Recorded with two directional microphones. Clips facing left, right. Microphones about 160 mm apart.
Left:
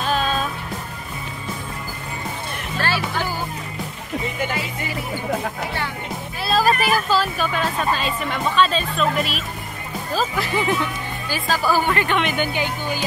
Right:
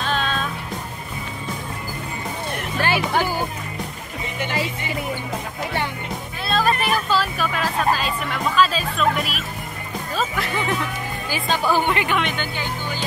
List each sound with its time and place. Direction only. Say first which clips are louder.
0.0 s music: left 2 dB; 5° left (ahead or behind)
2.8 s music: right 2 dB; 15° right (ahead or behind)
6.4 s speech: left 2 dB; 5° left (ahead or behind)
11.2 s speech: even; 20° right (ahead or behind)
12.1 s speech: left 1 dB; centre (ahead or behind)
12.4 s speech: left 4 dB; 15° left (ahead or behind)